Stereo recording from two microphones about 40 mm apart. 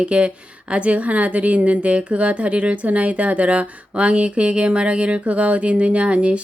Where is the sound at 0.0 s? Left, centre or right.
Right.